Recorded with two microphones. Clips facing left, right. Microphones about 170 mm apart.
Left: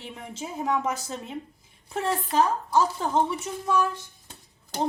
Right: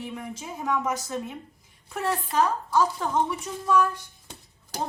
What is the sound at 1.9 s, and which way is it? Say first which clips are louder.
Speech: left 1 dB; 25° left (ahead or behind).